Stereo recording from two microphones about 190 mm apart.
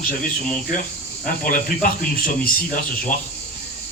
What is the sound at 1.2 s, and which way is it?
Speech, 45° left (ahead or behind).